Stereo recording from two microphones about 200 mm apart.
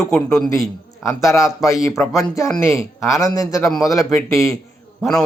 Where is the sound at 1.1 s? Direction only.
15° left (ahead or behind).